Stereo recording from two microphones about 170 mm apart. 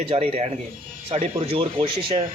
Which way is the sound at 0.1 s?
35° right (ahead or behind).